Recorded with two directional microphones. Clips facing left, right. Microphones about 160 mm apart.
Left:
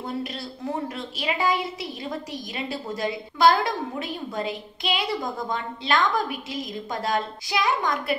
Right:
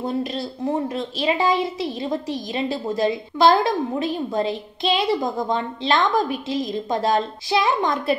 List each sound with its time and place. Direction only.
0.0 s a woman's voice: 25° right (ahead or behind)